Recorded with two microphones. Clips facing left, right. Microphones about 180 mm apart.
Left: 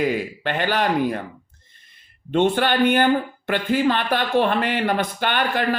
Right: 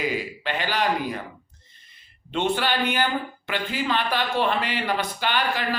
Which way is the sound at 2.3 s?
50° left (ahead or behind).